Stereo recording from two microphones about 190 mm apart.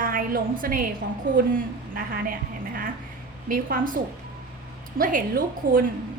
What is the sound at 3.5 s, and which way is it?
Speech, 45° right (ahead or behind).